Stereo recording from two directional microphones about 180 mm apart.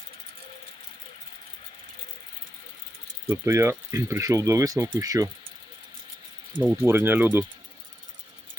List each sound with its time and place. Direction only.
3.2 s speech: 15° right (ahead or behind)
6.6 s speech: 10° right (ahead or behind)